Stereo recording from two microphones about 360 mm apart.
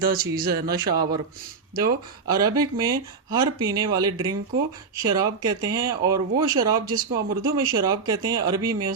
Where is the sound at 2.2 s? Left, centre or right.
Centre.